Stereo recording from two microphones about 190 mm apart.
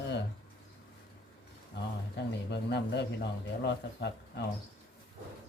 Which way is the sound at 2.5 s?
65° left (ahead or behind).